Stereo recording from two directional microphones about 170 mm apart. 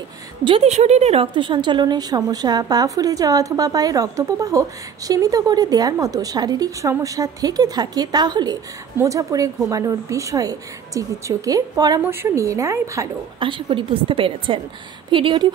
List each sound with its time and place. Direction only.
0.4 s a woman's voice: 35° right (ahead or behind); by 13.1 s 15° right (ahead or behind)
13.4 s a woman's voice: 30° right (ahead or behind)